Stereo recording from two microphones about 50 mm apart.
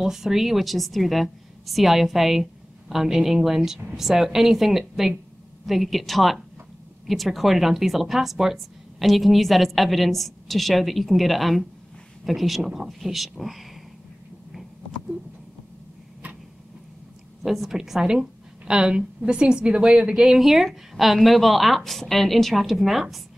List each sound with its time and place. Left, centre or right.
0.0 s a woman's voice: centre
14.5 s a sound: centre
17.4 s a woman's voice: centre